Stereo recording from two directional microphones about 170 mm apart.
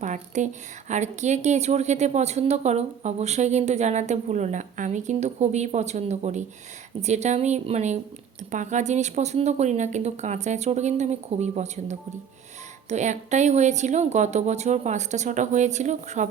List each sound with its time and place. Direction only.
0.0 s a woman's voice: 45° right (ahead or behind)